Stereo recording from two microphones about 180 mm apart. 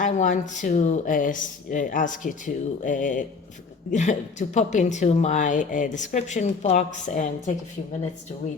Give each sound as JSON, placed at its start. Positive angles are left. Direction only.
{"t": 0.0, "sound": "a woman's voice", "side_deg": 45}